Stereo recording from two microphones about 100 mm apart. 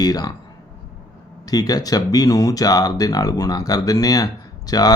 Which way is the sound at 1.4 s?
40° left (ahead or behind).